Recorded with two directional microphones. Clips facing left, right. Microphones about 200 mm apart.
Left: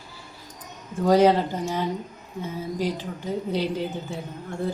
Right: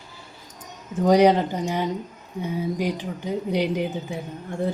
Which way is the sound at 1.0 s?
15° right (ahead or behind).